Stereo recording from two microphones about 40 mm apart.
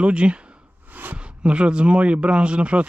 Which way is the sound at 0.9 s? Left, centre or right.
Right.